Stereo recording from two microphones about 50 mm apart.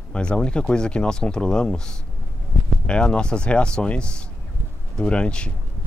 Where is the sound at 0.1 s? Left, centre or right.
Left.